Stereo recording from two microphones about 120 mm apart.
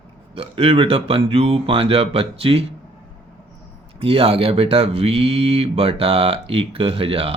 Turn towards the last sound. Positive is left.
turn(degrees=-50)  # may be behind; listen again after turning